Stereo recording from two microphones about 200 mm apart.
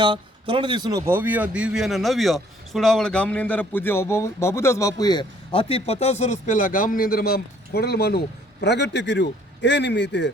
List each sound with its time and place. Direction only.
0.0 s speech: 25° right (ahead or behind); by 10.3 s 60° left (ahead or behind)